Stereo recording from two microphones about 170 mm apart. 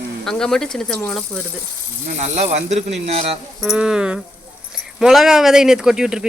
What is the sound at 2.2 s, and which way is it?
Speech, 40° right (ahead or behind).